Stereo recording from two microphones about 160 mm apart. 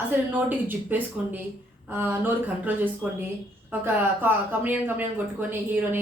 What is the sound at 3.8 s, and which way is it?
A woman's voice, 10° right (ahead or behind).